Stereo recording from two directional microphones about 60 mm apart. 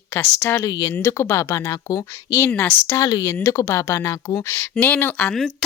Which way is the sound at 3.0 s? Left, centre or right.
Left.